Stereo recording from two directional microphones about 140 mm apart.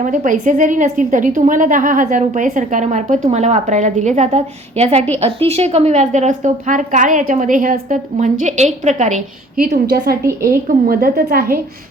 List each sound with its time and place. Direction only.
0.0 s a woman's voice: 65° right (ahead or behind)
9.9 s a woman's voice: 90° right